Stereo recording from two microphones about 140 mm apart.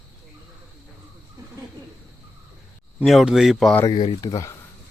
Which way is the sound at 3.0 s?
Centre (ahead or behind).